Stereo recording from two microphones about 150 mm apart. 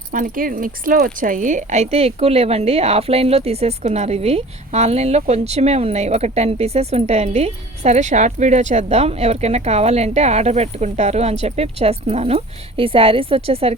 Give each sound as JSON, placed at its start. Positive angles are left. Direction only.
{"t": 0.1, "sound": "speech", "side_deg": -65}